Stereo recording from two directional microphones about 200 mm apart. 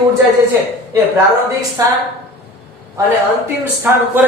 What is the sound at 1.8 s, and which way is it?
Speech, 15° right (ahead or behind).